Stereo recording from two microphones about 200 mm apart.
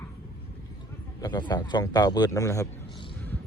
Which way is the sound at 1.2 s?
20° left (ahead or behind).